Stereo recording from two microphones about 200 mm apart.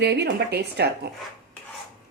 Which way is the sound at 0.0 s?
55° right (ahead or behind).